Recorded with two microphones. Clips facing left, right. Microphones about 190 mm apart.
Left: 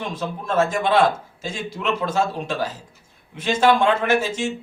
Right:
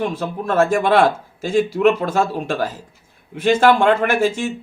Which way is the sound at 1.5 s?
55° right (ahead or behind).